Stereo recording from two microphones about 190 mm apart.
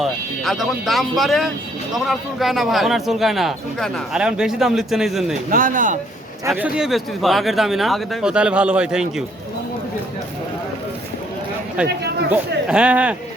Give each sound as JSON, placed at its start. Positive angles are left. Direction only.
{"t": 0.0, "sound": "speech", "side_deg": 0}
{"t": 5.5, "sound": "speech", "side_deg": -45}
{"t": 6.6, "sound": "speech", "side_deg": -5}
{"t": 11.8, "sound": "speech", "side_deg": -5}